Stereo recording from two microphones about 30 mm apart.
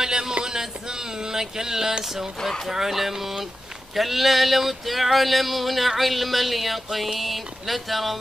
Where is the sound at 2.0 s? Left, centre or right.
Centre.